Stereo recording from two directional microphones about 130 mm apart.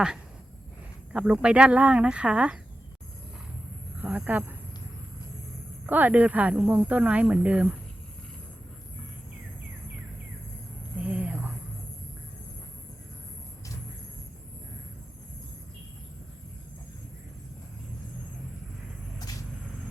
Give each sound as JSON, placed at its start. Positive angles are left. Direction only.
{"t": 1.1, "sound": "speech", "side_deg": -10}
{"t": 4.0, "sound": "speech", "side_deg": -10}
{"t": 5.8, "sound": "speech", "side_deg": -15}
{"t": 10.9, "sound": "a sound", "side_deg": -10}
{"t": 19.3, "sound": "vehicle", "side_deg": 30}